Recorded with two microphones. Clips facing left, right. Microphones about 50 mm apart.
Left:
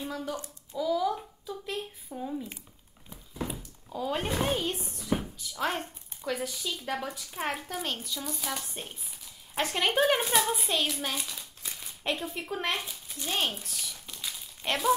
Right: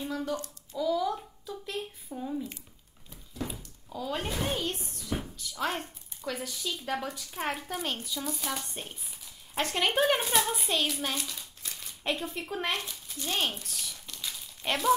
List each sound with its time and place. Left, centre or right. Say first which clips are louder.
0.0 s a child's voice: right 2 dB; centre
3.1 s a sound: left 1 dB; left
3.9 s speech: left 3 dB; centre
5.0 s speech: left 4 dB; centre
14.0 s crumpling: even; centre